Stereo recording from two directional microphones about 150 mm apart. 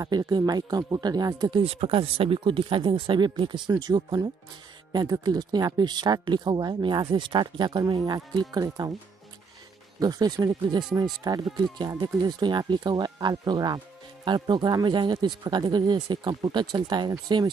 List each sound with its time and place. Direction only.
0.0 s speech: 25° right (ahead or behind)
1.6 s speech: 40° right (ahead or behind)
9.9 s speech: 25° right (ahead or behind)